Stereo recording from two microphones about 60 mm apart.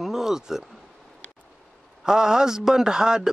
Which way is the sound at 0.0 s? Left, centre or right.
Centre.